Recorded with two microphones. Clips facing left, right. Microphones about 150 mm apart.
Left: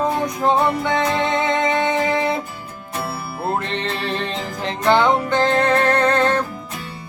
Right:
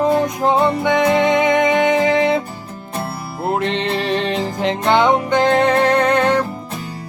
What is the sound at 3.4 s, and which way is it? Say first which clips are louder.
Music: right 4 dB; 20° right (ahead or behind).